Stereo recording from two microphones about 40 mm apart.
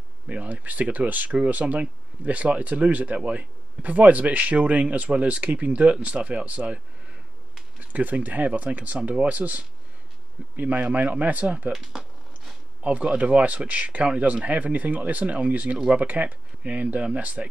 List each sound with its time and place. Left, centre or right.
0.3 s speech: right
7.9 s speech: right
11.7 s speech: centre
12.8 s speech: right